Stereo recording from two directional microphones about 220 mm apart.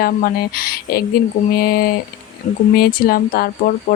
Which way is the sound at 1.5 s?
40° left (ahead or behind).